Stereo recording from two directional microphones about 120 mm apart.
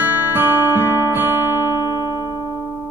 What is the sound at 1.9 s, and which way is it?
Music, 30° left (ahead or behind).